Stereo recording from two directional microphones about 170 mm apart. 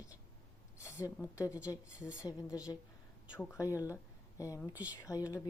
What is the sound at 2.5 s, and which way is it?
Speech, 20° left (ahead or behind).